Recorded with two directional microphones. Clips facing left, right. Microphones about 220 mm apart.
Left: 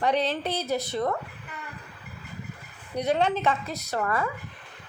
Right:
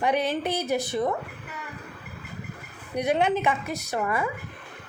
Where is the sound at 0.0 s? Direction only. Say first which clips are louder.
Right 1 dB; 10° right (ahead or behind).